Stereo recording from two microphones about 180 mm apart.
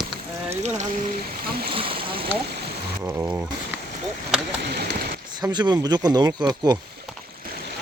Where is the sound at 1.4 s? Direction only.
60° right (ahead or behind).